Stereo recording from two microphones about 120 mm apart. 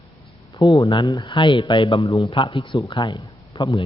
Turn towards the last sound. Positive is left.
turn(degrees=40)  # may be behind; listen again after turning